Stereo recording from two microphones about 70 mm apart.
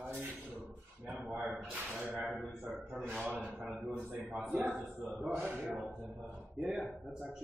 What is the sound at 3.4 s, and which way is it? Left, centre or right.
Speech, centre.